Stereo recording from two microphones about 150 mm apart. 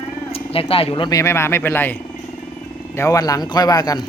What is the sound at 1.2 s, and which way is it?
Speech, 15° left (ahead or behind).